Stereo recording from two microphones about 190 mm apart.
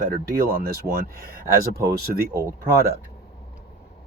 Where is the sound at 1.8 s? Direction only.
55° right (ahead or behind).